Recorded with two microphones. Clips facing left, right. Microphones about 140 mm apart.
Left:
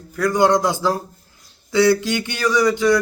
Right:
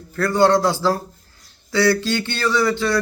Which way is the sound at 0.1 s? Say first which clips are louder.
Even; 15° left (ahead or behind).